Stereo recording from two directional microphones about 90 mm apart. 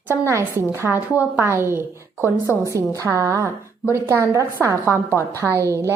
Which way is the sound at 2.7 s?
35° right (ahead or behind).